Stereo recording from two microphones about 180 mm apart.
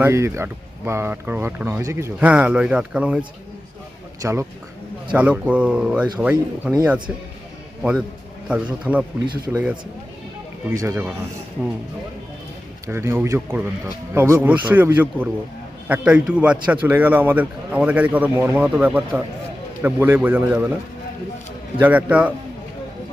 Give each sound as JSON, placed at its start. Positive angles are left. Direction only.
{"t": 0.0, "sound": "a man's voice", "side_deg": -15}
{"t": 7.8, "sound": "a man's voice", "side_deg": -5}
{"t": 9.2, "sound": "a man's voice", "side_deg": -20}
{"t": 10.8, "sound": "a man's voice", "side_deg": -15}
{"t": 12.9, "sound": "a man's voice", "side_deg": -15}
{"t": 21.8, "sound": "a man's voice", "side_deg": -10}